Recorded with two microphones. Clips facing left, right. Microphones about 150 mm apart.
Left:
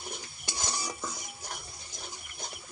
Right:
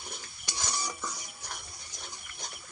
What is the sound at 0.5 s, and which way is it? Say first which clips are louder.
Stir: even; 25° left (ahead or behind).